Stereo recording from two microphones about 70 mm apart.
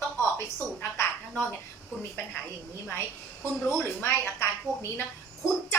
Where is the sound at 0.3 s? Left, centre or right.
Left.